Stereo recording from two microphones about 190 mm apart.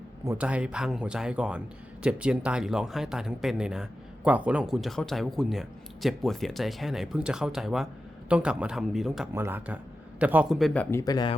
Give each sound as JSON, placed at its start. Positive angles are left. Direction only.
{"t": 0.3, "sound": "speech", "side_deg": -5}
{"t": 9.3, "sound": "speech", "side_deg": -10}
{"t": 10.9, "sound": "speech", "side_deg": 20}